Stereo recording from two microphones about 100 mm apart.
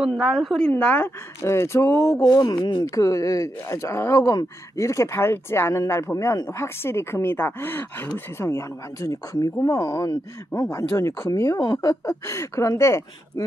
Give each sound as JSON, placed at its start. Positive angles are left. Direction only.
{"t": 0.0, "sound": "a woman's voice", "side_deg": -5}
{"t": 1.4, "sound": "speech", "side_deg": 25}
{"t": 2.3, "sound": "speech", "side_deg": 45}
{"t": 2.8, "sound": "speech", "side_deg": 30}
{"t": 4.3, "sound": "speech", "side_deg": 35}
{"t": 11.5, "sound": "speech", "side_deg": 50}
{"t": 11.9, "sound": "speech", "side_deg": 30}